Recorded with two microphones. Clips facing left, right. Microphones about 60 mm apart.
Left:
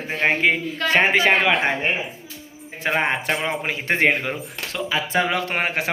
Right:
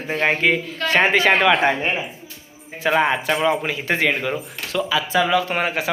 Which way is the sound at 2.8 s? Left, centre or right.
Left.